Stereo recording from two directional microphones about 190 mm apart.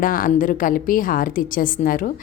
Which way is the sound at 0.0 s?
45° left (ahead or behind).